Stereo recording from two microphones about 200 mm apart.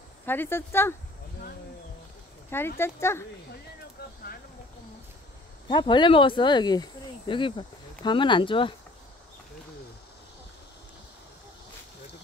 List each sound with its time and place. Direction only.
0.2 s speech: 10° left (ahead or behind)
2.8 s speech: 15° left (ahead or behind)
5.7 s speech: 25° left (ahead or behind)